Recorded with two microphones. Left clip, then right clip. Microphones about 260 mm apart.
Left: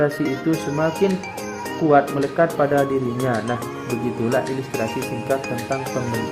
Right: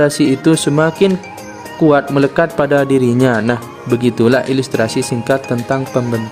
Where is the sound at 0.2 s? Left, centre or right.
Right.